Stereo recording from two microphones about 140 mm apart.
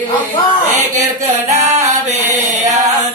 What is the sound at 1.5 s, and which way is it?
Music, 55° right (ahead or behind).